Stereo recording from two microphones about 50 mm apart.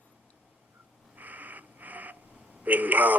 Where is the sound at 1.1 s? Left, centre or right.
Right.